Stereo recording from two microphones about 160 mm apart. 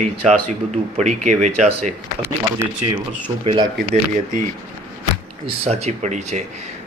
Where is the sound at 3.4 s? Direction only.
35° right (ahead or behind).